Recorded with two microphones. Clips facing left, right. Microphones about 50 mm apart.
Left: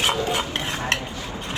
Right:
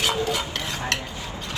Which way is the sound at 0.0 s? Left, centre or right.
Left.